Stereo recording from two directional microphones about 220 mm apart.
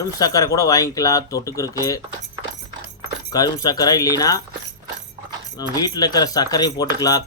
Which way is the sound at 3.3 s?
15° left (ahead or behind).